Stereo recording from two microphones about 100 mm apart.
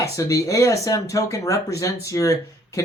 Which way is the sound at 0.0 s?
35° left (ahead or behind).